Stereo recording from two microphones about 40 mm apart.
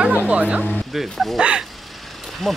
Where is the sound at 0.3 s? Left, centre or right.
Right.